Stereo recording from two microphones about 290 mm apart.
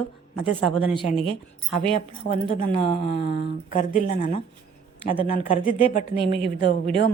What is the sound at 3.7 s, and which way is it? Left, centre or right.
Speech, left.